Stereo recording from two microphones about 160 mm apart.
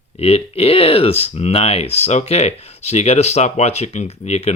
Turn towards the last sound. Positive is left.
turn(degrees=40)  # may be behind; listen again after turning